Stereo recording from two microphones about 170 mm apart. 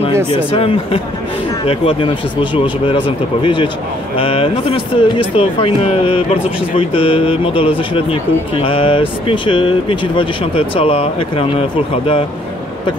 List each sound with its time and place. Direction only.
0.5 s speech: 35° left (ahead or behind)